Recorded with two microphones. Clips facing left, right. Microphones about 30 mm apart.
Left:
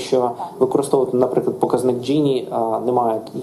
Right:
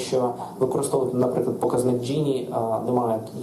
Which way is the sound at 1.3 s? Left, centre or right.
Left.